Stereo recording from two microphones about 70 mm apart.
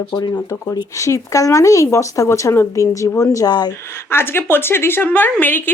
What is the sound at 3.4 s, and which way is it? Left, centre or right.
Speech, left.